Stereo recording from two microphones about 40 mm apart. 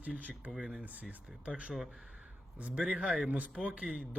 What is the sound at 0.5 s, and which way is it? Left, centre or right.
Speech, centre.